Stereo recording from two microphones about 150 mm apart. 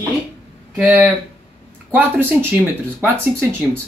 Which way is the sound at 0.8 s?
10° right (ahead or behind).